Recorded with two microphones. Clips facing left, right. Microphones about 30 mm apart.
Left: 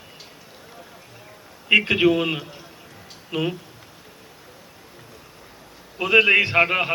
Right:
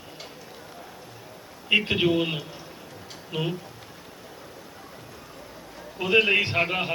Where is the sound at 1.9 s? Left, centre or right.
Left.